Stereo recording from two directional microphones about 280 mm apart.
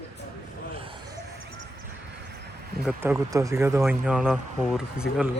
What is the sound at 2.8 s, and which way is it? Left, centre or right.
Speech, centre.